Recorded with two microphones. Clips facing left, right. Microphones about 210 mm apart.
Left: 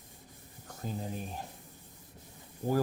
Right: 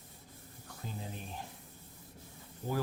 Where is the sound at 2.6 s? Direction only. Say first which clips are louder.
Left 6 dB; 15° left (ahead or behind).